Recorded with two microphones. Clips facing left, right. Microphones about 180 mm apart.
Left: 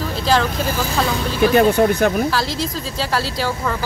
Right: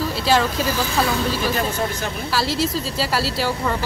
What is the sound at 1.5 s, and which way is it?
Speech, 60° left (ahead or behind).